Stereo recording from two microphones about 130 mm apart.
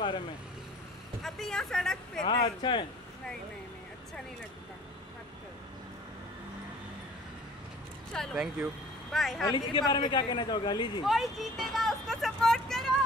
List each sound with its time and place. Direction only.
1.2 s speech: centre (ahead or behind)
2.2 s speech: 35° left (ahead or behind)
8.1 s speech: 5° left (ahead or behind)
9.5 s speech: 35° left (ahead or behind)
11.1 s speech: centre (ahead or behind)